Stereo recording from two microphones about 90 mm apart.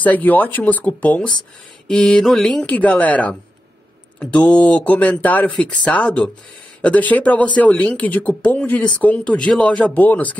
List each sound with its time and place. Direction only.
0.0 s speech: 20° left (ahead or behind)